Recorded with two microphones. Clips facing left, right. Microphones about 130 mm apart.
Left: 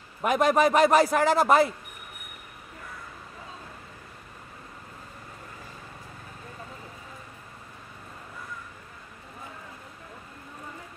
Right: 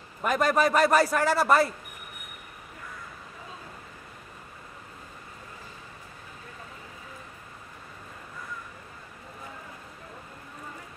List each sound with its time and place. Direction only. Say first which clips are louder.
0.2 s a man's voice: left 2 dB; 15° left (ahead or behind)